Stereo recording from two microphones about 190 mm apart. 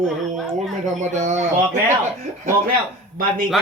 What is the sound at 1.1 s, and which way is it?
Speech, 40° right (ahead or behind).